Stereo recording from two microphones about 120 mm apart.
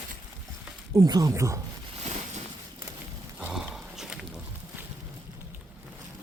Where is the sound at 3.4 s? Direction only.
5° right (ahead or behind).